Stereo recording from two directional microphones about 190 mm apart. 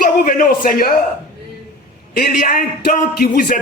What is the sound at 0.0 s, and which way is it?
Speech, 45° left (ahead or behind).